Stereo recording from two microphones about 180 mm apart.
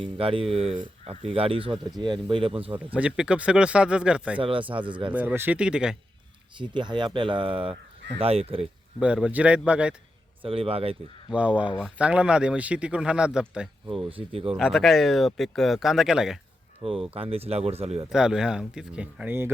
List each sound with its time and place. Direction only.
0.0 s speech: 30° right (ahead or behind)
2.7 s speech: 5° right (ahead or behind)
4.4 s speech: 30° right (ahead or behind)
5.1 s speech: 10° right (ahead or behind)
6.6 s speech: 25° right (ahead or behind)
9.0 s a man's voice: 5° right (ahead or behind)
10.4 s speech: 30° right (ahead or behind)
11.3 s a man's voice: 5° right (ahead or behind)
14.1 s speech: 30° right (ahead or behind)
14.5 s speech: centre (ahead or behind)
16.8 s speech: 30° right (ahead or behind)
18.1 s speech: 5° right (ahead or behind)